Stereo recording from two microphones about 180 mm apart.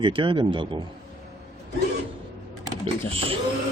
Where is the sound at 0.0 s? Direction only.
30° right (ahead or behind).